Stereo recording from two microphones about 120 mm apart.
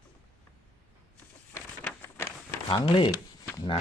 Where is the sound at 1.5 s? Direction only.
20° left (ahead or behind).